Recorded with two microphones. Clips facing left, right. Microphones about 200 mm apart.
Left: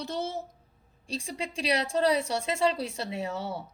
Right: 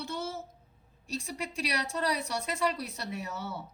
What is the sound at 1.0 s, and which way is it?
A woman's voice, 30° left (ahead or behind).